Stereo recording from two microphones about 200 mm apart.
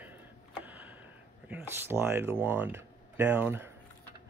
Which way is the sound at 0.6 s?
10° right (ahead or behind).